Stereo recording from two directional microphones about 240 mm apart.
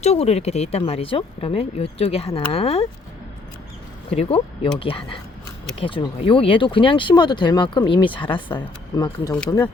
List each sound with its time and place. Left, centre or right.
0.0 s speech: left
4.1 s speech: left